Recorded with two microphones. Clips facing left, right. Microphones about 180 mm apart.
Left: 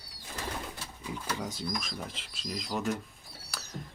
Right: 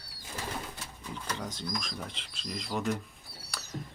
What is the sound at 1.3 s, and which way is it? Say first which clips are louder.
Speech: left 1 dB; 10° left (ahead or behind).